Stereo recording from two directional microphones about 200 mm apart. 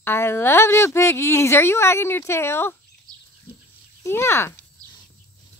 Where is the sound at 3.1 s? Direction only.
20° right (ahead or behind).